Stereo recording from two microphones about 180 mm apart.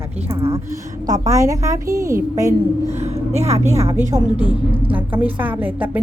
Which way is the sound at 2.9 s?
35° right (ahead or behind).